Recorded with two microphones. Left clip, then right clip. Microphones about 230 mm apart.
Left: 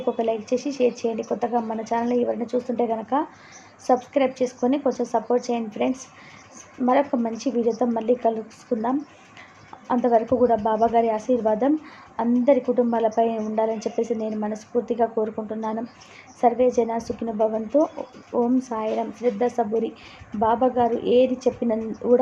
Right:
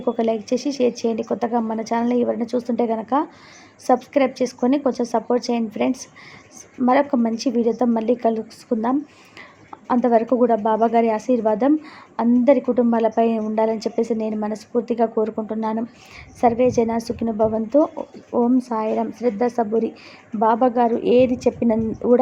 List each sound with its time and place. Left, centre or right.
0.0 s a woman's voice: right